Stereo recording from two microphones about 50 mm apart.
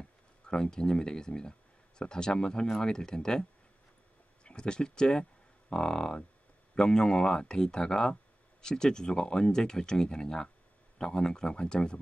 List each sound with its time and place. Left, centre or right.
0.5 s speech: centre
4.5 s speech: centre